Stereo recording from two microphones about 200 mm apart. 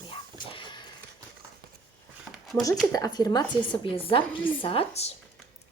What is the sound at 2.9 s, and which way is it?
A woman's voice, 20° left (ahead or behind).